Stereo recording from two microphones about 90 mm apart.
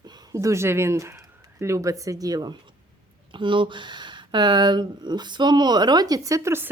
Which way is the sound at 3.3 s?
65° right (ahead or behind).